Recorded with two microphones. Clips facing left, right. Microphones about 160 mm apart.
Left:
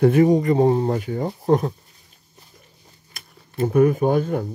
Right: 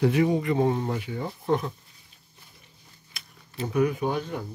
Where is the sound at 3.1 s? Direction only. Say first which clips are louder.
Left 3 dB; 50° left (ahead or behind).